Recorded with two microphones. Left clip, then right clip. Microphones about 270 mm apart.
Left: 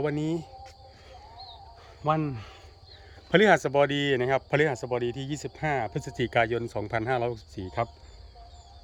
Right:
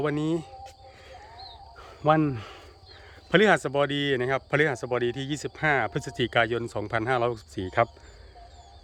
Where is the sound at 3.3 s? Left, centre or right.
Centre.